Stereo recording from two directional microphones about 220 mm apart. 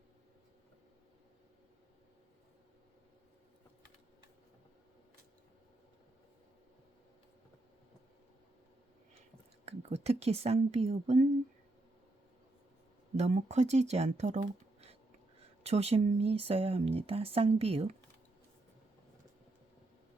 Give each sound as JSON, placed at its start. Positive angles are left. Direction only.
{"t": 9.6, "sound": "speech", "side_deg": -30}
{"t": 13.1, "sound": "speech", "side_deg": -30}